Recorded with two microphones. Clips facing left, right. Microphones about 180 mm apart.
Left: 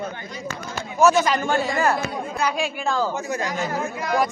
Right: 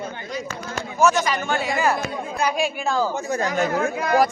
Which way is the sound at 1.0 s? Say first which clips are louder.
Left 2 dB; 10° left (ahead or behind).